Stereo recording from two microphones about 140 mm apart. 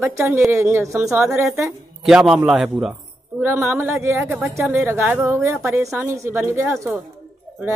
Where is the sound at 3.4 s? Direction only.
15° right (ahead or behind).